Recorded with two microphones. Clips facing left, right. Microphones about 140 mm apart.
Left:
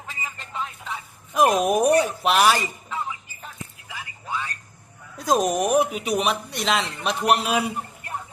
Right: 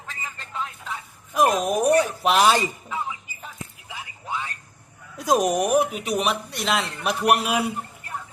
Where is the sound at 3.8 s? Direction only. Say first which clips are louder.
Even; 20° right (ahead or behind).